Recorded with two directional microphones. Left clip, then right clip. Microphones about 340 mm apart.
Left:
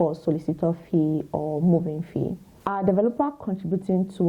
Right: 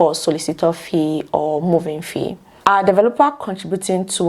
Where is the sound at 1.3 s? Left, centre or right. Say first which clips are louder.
Right 10 dB; right.